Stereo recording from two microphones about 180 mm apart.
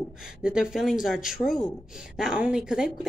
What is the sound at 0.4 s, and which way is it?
Speech, 5° right (ahead or behind).